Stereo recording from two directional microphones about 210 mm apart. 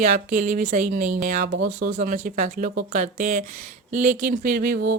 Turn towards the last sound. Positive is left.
turn(degrees=-45)  # may be behind; listen again after turning